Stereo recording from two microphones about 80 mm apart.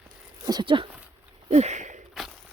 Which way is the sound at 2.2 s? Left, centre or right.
Centre.